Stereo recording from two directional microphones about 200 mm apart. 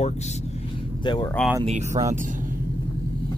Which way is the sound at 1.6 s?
35° right (ahead or behind).